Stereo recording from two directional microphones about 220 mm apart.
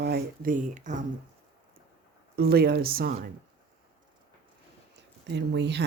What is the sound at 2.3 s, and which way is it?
Speech, 45° right (ahead or behind).